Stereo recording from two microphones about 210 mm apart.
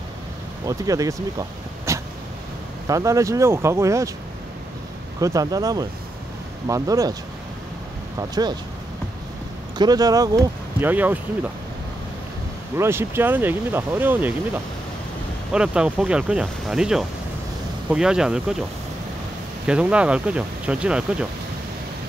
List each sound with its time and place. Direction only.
0.7 s speech: 15° right (ahead or behind)
5.2 s speech: 15° right (ahead or behind)
8.2 s speech: 20° right (ahead or behind)
9.8 s speech: 20° right (ahead or behind)
12.7 s speech: 10° right (ahead or behind)
19.6 s speech: 5° right (ahead or behind)